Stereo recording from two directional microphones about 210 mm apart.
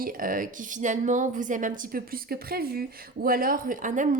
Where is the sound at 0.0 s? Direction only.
40° right (ahead or behind).